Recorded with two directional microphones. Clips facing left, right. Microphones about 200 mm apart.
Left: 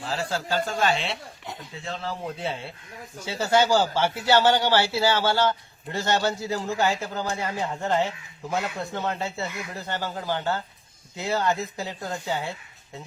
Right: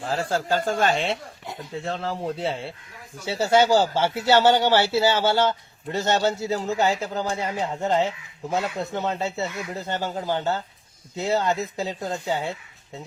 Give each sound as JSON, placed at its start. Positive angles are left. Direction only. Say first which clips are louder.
{"t": 0.0, "sound": "speech", "louder": "right 4 dB", "side_deg": -50}
{"t": 2.2, "sound": "speech", "louder": "right 4 dB", "side_deg": -30}